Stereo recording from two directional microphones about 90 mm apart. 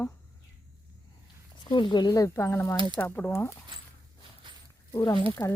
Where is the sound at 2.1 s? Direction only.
35° left (ahead or behind).